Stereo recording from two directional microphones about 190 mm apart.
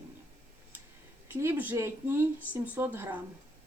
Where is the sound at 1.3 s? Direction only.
10° right (ahead or behind).